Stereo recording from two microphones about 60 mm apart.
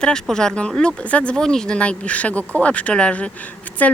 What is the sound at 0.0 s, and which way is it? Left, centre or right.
Speech, centre.